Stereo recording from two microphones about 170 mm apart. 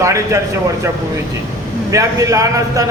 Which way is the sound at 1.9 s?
20° right (ahead or behind).